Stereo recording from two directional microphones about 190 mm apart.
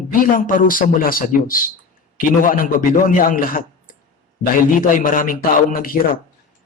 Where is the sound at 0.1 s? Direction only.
45° left (ahead or behind).